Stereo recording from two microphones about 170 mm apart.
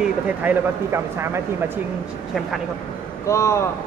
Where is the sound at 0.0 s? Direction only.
10° right (ahead or behind).